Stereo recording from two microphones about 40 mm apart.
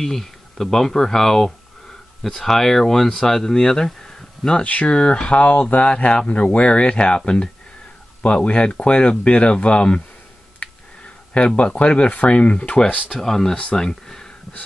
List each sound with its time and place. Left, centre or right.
0.0 s speech: centre
4.6 s speech: left
4.9 s speech: left
10.6 s tick: left
11.3 s speech: left
13.2 s speech: centre